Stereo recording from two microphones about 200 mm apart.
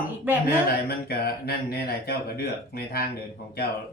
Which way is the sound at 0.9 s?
50° left (ahead or behind).